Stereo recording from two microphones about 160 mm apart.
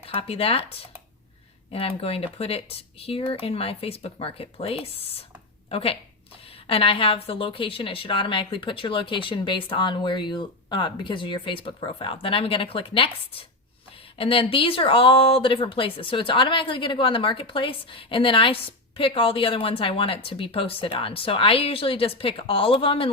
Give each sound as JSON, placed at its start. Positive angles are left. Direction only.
{"t": 0.0, "sound": "speech", "side_deg": 35}
{"t": 1.7, "sound": "speech", "side_deg": 35}